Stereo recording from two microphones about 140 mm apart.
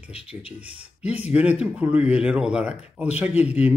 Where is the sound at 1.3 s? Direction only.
10° right (ahead or behind).